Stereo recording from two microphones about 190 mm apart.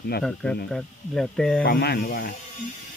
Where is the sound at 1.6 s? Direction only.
55° left (ahead or behind).